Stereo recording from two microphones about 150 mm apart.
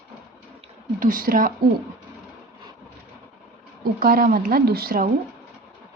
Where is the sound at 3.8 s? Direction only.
80° right.